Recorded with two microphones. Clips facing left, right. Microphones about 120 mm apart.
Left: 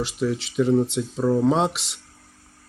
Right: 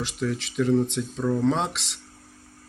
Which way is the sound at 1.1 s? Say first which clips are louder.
Left 5 dB; 30° left (ahead or behind).